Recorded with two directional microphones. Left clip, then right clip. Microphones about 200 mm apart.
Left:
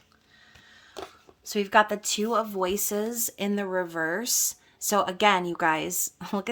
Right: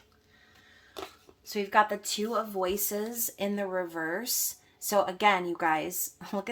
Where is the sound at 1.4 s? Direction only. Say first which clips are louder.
Left 3 dB; 45° left (ahead or behind).